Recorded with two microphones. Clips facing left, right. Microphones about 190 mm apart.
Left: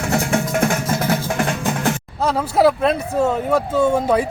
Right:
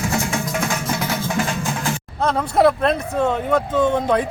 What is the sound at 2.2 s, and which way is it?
Speech, 5° left (ahead or behind).